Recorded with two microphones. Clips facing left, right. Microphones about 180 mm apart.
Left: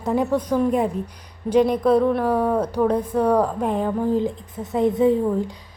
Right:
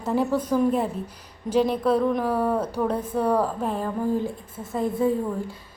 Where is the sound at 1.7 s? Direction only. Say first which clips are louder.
Left 4 dB; 10° left (ahead or behind).